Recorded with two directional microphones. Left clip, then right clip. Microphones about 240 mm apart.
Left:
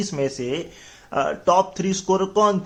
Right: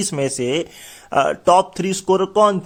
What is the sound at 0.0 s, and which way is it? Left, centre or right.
Speech, right.